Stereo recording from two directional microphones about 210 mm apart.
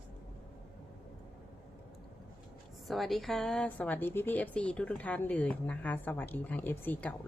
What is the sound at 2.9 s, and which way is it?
A woman's voice, centre (ahead or behind).